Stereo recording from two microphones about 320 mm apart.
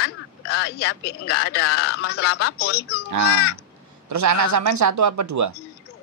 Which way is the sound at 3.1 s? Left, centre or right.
Right.